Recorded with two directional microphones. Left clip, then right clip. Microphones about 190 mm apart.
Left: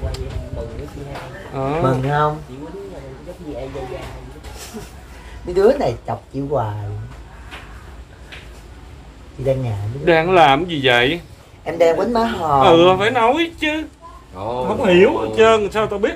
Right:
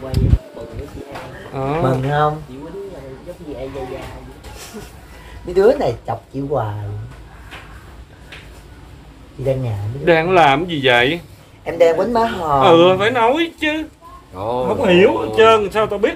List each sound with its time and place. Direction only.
1.5 s a man's voice: 5° right (ahead or behind)
5.5 s a man's voice: 5° left (ahead or behind)
10.0 s a man's voice: centre (ahead or behind)
12.5 s a man's voice: centre (ahead or behind)
14.3 s speech: 45° right (ahead or behind)
14.7 s a man's voice: 5° right (ahead or behind)